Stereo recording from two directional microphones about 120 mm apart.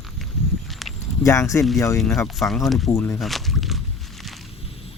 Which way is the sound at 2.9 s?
20° left (ahead or behind).